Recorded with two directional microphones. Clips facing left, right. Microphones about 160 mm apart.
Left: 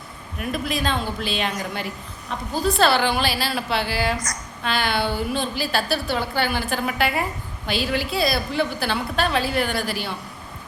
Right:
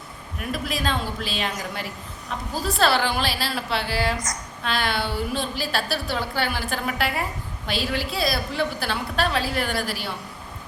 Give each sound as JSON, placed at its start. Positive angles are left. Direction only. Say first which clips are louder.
{"t": 0.3, "sound": "a woman's voice", "louder": "left 3 dB", "side_deg": 0}